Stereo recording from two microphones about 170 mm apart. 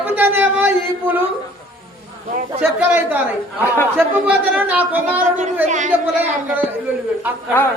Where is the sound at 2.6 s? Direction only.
10° right (ahead or behind).